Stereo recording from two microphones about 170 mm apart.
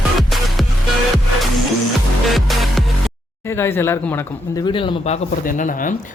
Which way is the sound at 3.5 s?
15° left (ahead or behind).